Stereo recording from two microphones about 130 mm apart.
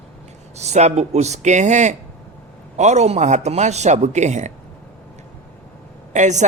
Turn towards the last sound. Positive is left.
turn(degrees=-65)  # may be behind; listen again after turning